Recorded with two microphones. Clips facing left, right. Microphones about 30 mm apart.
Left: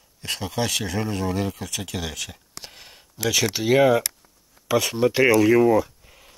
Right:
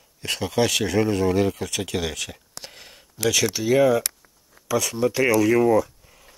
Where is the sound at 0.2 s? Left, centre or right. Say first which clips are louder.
Right 4 dB; centre.